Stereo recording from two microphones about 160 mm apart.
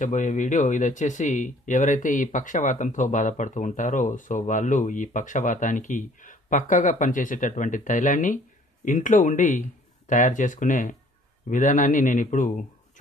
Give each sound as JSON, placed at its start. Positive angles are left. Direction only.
{"t": 0.0, "sound": "speech", "side_deg": 50}